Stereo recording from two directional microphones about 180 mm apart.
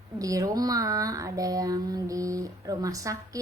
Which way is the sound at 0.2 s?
20° right (ahead or behind).